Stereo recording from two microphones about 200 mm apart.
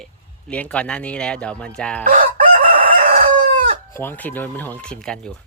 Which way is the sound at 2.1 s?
45° right (ahead or behind).